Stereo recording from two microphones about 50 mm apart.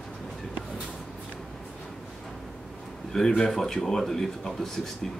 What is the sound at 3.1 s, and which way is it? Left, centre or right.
Speech, centre.